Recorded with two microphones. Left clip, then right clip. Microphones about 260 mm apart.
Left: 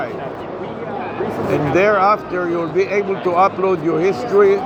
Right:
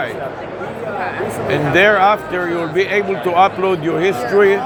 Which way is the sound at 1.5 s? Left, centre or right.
Right.